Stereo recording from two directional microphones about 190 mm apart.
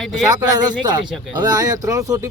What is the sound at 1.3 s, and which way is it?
Speech, 20° right (ahead or behind).